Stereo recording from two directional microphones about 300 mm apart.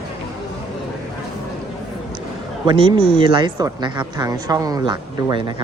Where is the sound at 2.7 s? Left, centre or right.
Centre.